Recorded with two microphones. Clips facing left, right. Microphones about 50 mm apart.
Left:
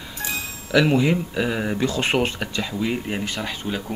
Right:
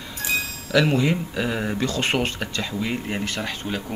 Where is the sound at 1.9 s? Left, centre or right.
Centre.